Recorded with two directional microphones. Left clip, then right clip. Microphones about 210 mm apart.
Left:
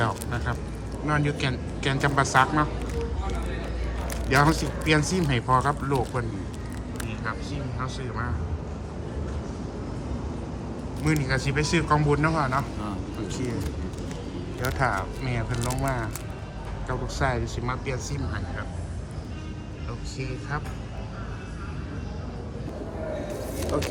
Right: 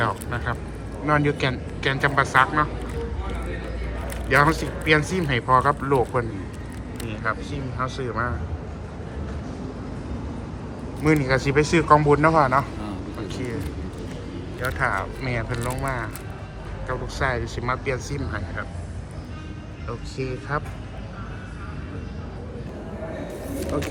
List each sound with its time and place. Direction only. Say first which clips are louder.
0.0 s speech: right 3 dB; 15° left (ahead or behind)
4.3 s speech: right 3 dB; 20° left (ahead or behind)
7.8 s speech: right 8 dB; 5° left (ahead or behind)
11.0 s speech: right 6 dB; 10° left (ahead or behind)
13.2 s speech: right 1 dB; 25° left (ahead or behind)
14.6 s speech: right 2 dB; 25° left (ahead or behind)
20.1 s speech: right 5 dB; 10° left (ahead or behind)